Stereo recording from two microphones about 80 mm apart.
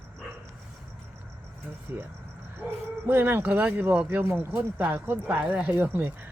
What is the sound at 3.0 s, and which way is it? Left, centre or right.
Speech, right.